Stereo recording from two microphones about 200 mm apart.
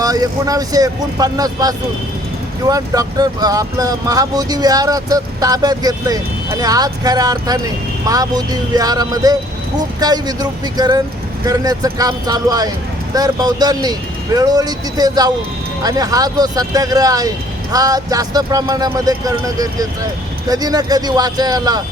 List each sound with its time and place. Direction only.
0.0 s speech: 20° right (ahead or behind)